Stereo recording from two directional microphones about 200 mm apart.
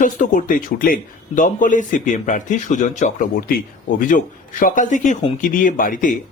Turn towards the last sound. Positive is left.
turn(degrees=40)  # may be behind; listen again after turning